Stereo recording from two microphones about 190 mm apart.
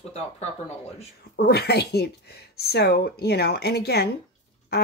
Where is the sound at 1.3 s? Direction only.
60° left (ahead or behind).